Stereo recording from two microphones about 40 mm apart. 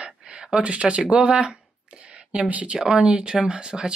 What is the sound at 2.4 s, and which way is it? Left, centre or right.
Speech, right.